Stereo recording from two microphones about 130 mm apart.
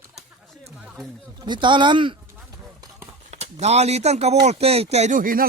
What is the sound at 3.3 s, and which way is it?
Speech, 55° right (ahead or behind).